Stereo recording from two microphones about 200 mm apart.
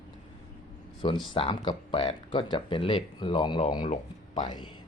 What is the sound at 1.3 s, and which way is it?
Speech, 25° left (ahead or behind).